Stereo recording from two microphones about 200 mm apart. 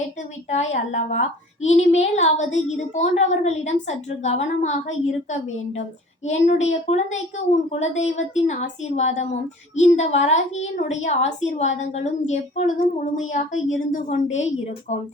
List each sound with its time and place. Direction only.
0.2 s a woman's voice: 35° left (ahead or behind)